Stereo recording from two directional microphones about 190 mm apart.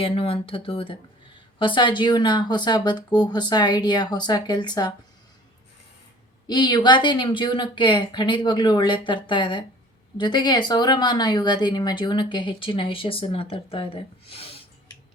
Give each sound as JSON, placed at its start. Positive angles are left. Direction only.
{"t": 0.0, "sound": "speech", "side_deg": 30}
{"t": 6.5, "sound": "speech", "side_deg": 20}